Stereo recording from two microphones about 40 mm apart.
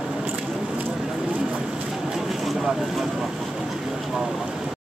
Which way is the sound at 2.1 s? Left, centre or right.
Centre.